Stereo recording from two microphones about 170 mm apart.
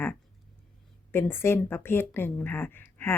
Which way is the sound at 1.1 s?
15° left (ahead or behind).